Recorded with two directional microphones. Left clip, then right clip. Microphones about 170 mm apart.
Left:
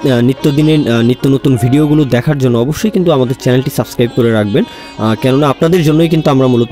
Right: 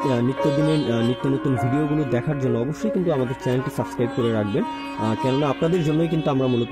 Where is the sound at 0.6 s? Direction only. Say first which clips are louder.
Left 10 dB; 20° left (ahead or behind).